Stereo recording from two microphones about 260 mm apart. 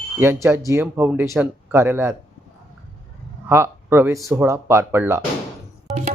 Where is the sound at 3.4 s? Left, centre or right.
Centre.